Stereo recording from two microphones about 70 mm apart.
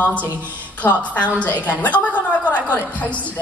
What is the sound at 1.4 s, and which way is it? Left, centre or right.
A woman's voice, left.